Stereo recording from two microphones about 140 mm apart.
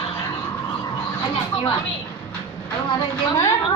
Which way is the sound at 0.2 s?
20° left (ahead or behind).